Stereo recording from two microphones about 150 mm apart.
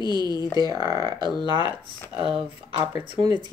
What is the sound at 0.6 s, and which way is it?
Speech, 25° right (ahead or behind).